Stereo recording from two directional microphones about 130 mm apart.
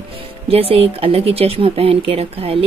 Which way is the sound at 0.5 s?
50° right (ahead or behind).